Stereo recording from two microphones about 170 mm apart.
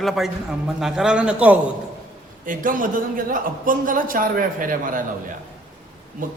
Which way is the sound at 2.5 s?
55° right (ahead or behind).